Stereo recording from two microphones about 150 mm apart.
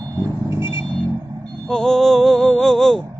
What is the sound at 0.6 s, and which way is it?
Vehicle, 15° right (ahead or behind).